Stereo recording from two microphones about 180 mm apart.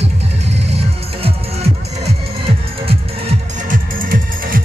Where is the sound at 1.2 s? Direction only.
35° right (ahead or behind).